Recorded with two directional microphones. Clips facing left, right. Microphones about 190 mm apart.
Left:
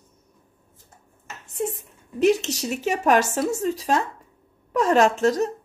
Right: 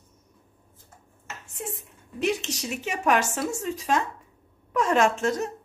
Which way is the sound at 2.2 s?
40° left (ahead or behind).